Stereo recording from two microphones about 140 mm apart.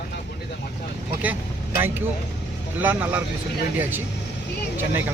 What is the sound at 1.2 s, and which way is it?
A man's voice, 15° right (ahead or behind).